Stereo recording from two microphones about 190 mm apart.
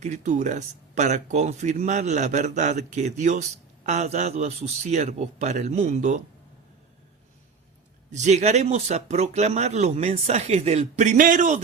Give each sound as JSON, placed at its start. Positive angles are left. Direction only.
{"t": 0.0, "sound": "speech", "side_deg": -40}
{"t": 8.1, "sound": "speech", "side_deg": -35}